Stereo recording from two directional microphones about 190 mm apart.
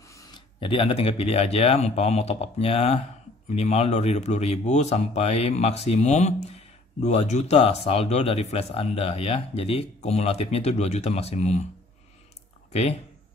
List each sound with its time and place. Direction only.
0.1 s speech: 20° left (ahead or behind)